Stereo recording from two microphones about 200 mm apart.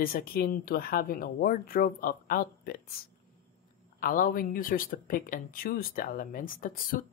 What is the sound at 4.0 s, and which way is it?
Speech, 45° left (ahead or behind).